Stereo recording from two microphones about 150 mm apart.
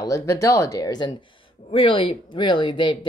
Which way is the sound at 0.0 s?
20° left (ahead or behind).